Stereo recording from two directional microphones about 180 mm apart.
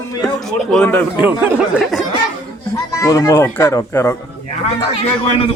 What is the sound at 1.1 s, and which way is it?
Speech, 5° right (ahead or behind).